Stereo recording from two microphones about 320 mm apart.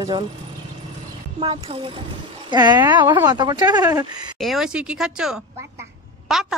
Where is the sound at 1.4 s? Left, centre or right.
Centre.